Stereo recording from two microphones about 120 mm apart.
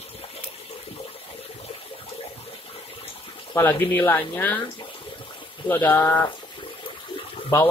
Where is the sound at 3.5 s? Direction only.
20° left (ahead or behind).